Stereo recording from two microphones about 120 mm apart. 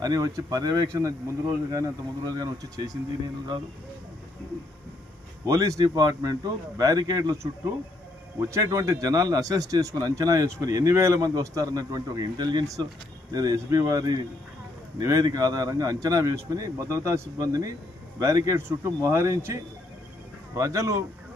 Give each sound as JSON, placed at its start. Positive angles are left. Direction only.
{"t": 0.0, "sound": "speech", "side_deg": -30}
{"t": 5.5, "sound": "speech", "side_deg": -25}
{"t": 20.6, "sound": "speech", "side_deg": -30}